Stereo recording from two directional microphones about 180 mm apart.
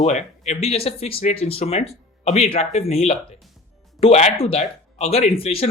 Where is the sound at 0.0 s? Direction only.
40° left (ahead or behind).